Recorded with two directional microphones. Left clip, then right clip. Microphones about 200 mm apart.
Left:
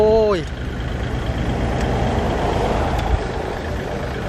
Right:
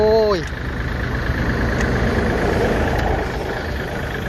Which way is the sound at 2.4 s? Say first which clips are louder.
Right 1 dB; 45° right (ahead or behind).